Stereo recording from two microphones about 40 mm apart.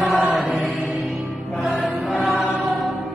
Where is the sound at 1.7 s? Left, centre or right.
Left.